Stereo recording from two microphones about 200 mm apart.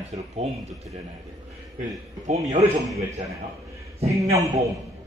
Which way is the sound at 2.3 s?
35° right (ahead or behind).